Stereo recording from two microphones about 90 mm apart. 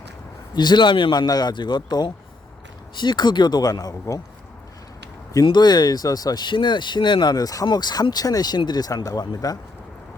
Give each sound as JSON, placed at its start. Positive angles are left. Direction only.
{"t": 0.5, "sound": "speech", "side_deg": 55}
{"t": 5.5, "sound": "speech", "side_deg": 55}